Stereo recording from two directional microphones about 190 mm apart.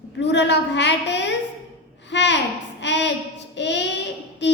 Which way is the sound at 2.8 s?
65° left (ahead or behind).